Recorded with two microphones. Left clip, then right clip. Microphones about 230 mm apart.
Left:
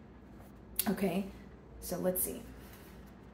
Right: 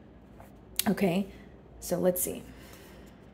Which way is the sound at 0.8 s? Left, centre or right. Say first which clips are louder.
Right 6 dB; right.